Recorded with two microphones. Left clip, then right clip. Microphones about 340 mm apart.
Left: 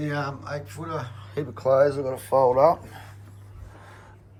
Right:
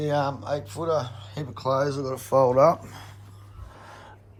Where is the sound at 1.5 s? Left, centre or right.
Right.